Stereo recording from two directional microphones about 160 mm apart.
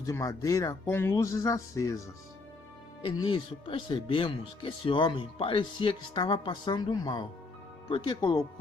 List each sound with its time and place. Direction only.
0.0 s speech: 20° left (ahead or behind)
3.0 s speech: 30° left (ahead or behind)